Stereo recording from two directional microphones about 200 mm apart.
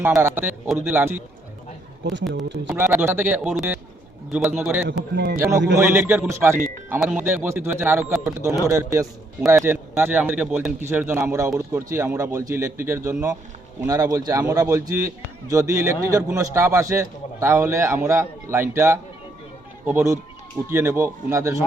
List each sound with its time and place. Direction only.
0.0 s a man's voice: 10° right (ahead or behind)
2.0 s speech: 60° right (ahead or behind)
2.6 s a man's voice: 10° right (ahead or behind)
4.9 s speech: 55° right (ahead or behind)
5.9 s a man's voice: 10° right (ahead or behind)